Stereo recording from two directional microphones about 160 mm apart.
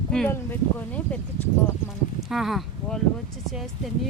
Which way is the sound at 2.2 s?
Centre (ahead or behind).